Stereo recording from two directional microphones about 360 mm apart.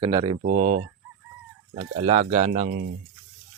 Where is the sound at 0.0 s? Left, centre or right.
Centre.